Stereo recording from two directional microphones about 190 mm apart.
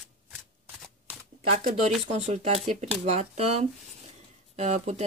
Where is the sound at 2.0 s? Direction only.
35° right (ahead or behind).